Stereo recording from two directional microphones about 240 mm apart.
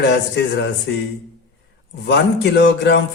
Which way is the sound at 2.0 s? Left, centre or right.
Left.